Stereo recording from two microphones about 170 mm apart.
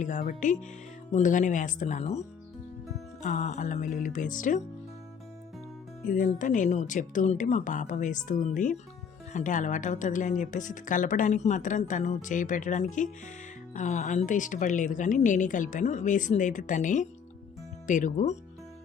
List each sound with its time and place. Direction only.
0.0 s speech: 50° left (ahead or behind)
3.2 s speech: 45° left (ahead or behind)
6.1 s speech: 50° left (ahead or behind)